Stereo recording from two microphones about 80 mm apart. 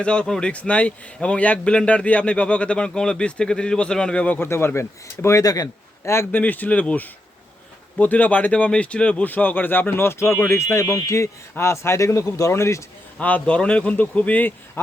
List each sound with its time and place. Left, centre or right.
0.0 s speech: centre
4.4 s speech: left
5.4 s speech: left
6.3 s speech: left
13.1 s speech: centre